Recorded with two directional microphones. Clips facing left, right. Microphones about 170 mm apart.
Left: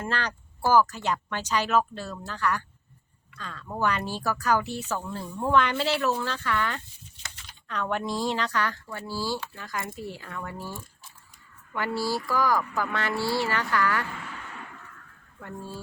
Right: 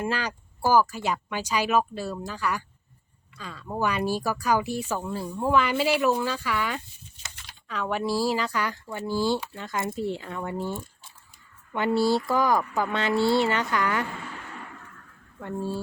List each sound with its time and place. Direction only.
0.0 s speech: 10° right (ahead or behind)
15.4 s speech: 25° right (ahead or behind)